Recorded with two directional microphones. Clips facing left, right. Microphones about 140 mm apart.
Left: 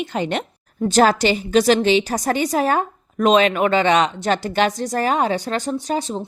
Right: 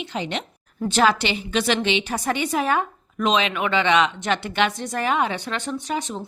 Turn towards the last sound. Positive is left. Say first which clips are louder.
# left 4 dB
turn(degrees=35)  # may be behind; listen again after turning